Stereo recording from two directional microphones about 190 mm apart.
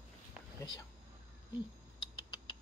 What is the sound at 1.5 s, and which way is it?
Rodents, 25° left (ahead or behind).